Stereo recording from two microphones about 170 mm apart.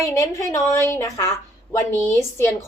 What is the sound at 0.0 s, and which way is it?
Speech, 15° left (ahead or behind).